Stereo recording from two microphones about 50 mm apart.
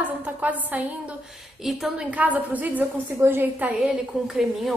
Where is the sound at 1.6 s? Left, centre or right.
Centre.